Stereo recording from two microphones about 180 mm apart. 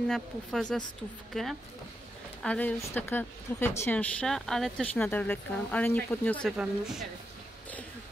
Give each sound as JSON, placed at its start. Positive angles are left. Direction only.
{"t": 0.1, "sound": "a woman's voice", "side_deg": 5}
{"t": 6.5, "sound": "speech", "side_deg": -5}